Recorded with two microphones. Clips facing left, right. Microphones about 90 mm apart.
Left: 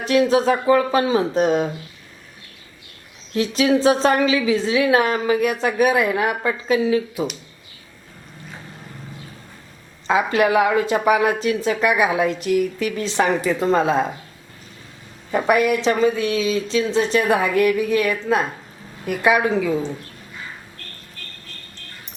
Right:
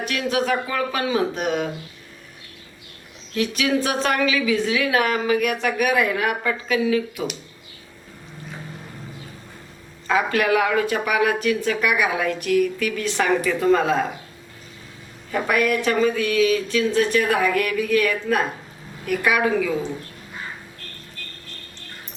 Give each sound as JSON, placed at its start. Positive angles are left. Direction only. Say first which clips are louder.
{"t": 0.0, "sound": "speech", "louder": "left 7 dB", "side_deg": 25}
{"t": 3.3, "sound": "speech", "louder": "left 4 dB", "side_deg": 30}
{"t": 10.1, "sound": "speech", "louder": "left 2 dB", "side_deg": 25}
{"t": 15.3, "sound": "speech", "louder": "left 3 dB", "side_deg": 20}